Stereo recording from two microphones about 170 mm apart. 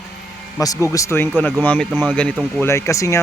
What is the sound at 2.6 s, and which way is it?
Speech, 15° left (ahead or behind).